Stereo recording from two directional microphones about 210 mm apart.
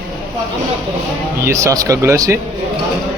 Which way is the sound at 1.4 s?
15° right (ahead or behind).